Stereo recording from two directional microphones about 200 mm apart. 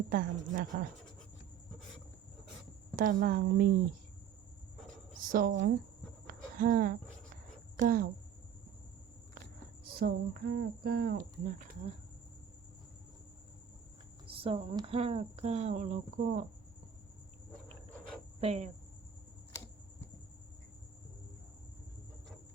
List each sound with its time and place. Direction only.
0.1 s speech: 45° right (ahead or behind)
2.9 s speech: 45° right (ahead or behind)
5.2 s speech: 45° right (ahead or behind)
6.2 s a sound: 45° right (ahead or behind)
7.8 s speech: 45° right (ahead or behind)
9.8 s speech: 50° right (ahead or behind)
14.3 s speech: 25° right (ahead or behind)
18.3 s speech: 30° right (ahead or behind)